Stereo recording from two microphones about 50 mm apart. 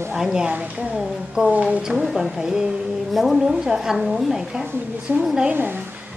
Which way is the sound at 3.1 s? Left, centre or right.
Centre.